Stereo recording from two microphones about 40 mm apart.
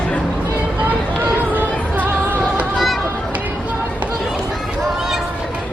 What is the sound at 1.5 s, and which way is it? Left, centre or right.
Music, right.